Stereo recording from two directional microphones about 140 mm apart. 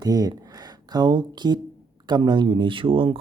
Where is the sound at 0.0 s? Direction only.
25° right (ahead or behind).